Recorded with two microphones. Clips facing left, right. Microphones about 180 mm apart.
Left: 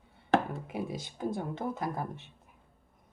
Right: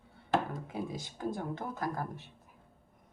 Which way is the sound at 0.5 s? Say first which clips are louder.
Left 2 dB; 20° left (ahead or behind).